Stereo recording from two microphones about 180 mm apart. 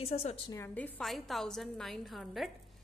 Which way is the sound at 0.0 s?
35° left (ahead or behind).